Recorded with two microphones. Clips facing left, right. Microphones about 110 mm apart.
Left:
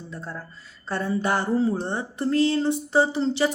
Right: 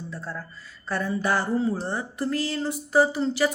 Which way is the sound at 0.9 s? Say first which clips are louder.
Left 1 dB; 25° left (ahead or behind).